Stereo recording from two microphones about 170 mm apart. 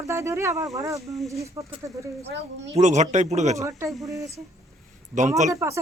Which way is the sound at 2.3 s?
90° right.